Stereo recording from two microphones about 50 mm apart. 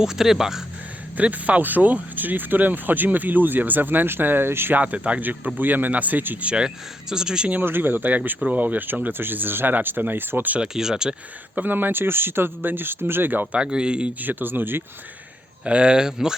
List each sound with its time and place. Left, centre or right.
0.0 s speech: centre
1.1 s speech: right
4.7 s speech: right
5.5 s speech: right
6.4 s speech: centre
7.6 s speech: right
10.6 s speech: centre
11.5 s speech: right
13.5 s speech: centre
14.2 s speech: right
15.6 s speech: centre